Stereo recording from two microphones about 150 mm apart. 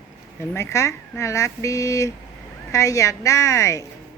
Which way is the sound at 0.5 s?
20° left (ahead or behind).